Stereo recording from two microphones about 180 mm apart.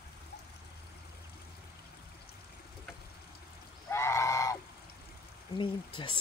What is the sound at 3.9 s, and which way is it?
Goose, 15° left (ahead or behind).